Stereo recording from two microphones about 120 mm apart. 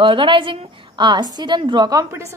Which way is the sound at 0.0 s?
45° right (ahead or behind).